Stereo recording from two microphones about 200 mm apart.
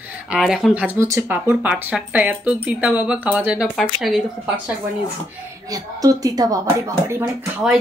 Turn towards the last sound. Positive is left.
turn(degrees=-10)  # may be behind; listen again after turning